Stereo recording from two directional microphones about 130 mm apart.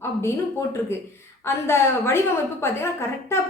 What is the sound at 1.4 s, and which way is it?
A woman's voice, 20° left (ahead or behind).